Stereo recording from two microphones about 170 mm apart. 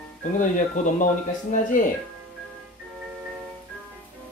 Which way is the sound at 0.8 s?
45° left (ahead or behind).